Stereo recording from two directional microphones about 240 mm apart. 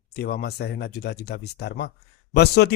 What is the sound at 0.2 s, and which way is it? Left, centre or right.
Speech, left.